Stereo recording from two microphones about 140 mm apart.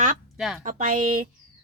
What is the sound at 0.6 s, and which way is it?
Speech, 75° right (ahead or behind).